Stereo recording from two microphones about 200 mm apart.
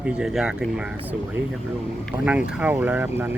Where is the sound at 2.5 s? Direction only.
5° right (ahead or behind).